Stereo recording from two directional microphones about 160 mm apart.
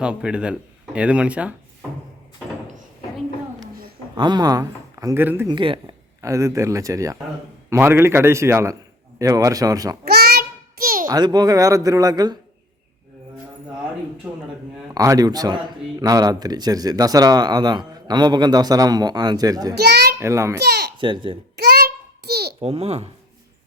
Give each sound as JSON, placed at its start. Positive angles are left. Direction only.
{"t": 0.0, "sound": "a man's voice", "side_deg": -5}
{"t": 4.2, "sound": "speech", "side_deg": -25}
{"t": 5.5, "sound": "speech", "side_deg": -30}
{"t": 6.2, "sound": "a man's voice", "side_deg": -20}
{"t": 10.1, "sound": "a sound", "side_deg": -80}
{"t": 11.0, "sound": "speech", "side_deg": -25}
{"t": 14.9, "sound": "speech", "side_deg": -20}
{"t": 19.7, "sound": "a sound", "side_deg": -90}
{"t": 20.1, "sound": "a man's voice", "side_deg": -15}
{"t": 20.6, "sound": "babbling", "side_deg": -90}
{"t": 21.0, "sound": "a child's voice", "side_deg": -30}
{"t": 21.5, "sound": "a sound", "side_deg": -80}
{"t": 22.6, "sound": "a child's voice", "side_deg": -40}